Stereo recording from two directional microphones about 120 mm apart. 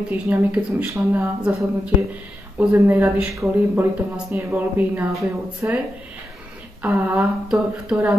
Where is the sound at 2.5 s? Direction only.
15° right (ahead or behind).